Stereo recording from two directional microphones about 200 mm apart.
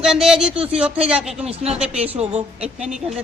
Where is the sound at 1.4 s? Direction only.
30° right (ahead or behind).